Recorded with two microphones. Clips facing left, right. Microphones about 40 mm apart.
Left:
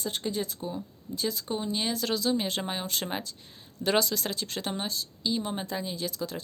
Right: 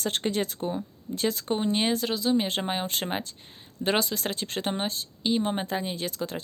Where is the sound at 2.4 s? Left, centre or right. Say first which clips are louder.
Right 3 dB; right.